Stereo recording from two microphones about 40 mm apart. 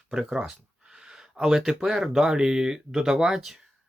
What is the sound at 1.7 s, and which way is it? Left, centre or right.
Speech, centre.